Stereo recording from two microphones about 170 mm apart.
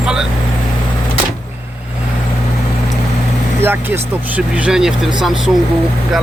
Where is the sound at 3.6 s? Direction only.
10° right (ahead or behind).